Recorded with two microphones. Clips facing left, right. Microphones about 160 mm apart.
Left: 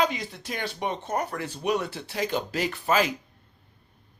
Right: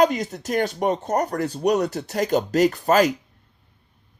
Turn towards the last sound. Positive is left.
turn(degrees=-45)  # may be behind; listen again after turning